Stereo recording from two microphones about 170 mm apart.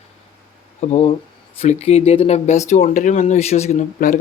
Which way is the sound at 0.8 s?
40° left (ahead or behind).